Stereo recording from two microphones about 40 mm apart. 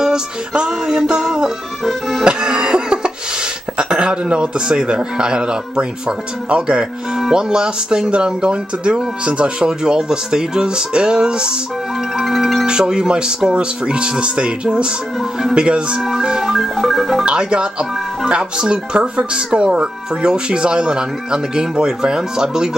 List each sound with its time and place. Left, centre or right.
0.7 s music: centre
1.9 s music: centre
2.2 s cough: right
3.7 s a man's voice: right
12.2 s music: centre
12.6 s speech: centre
16.0 s music: centre
17.2 s speech: right